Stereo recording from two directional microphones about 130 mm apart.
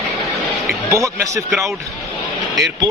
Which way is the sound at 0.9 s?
20° right (ahead or behind).